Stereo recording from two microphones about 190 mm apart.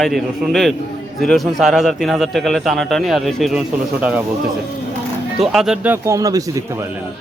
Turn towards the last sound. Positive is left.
turn(degrees=-15)  # may be behind; listen again after turning